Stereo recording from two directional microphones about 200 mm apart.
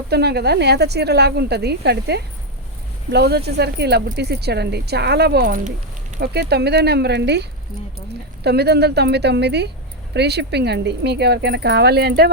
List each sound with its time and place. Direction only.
0.1 s speech: 55° right (ahead or behind)
8.4 s speech: 55° right (ahead or behind)